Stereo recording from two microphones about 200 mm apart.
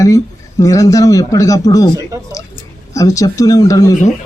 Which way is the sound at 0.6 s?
15° left (ahead or behind).